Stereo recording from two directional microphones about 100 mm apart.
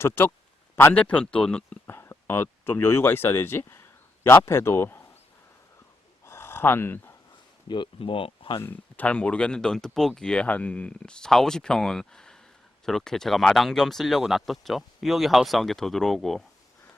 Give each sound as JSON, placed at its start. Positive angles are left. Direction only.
{"t": 0.0, "sound": "speech", "side_deg": 25}
{"t": 0.9, "sound": "speech", "side_deg": 15}
{"t": 1.9, "sound": "speech", "side_deg": 25}
{"t": 6.2, "sound": "a sound", "side_deg": 25}
{"t": 7.7, "sound": "speech", "side_deg": 55}
{"t": 8.6, "sound": "speech", "side_deg": 15}